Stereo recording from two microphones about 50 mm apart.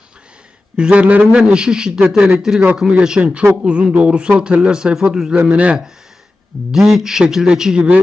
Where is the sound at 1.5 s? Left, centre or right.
Centre.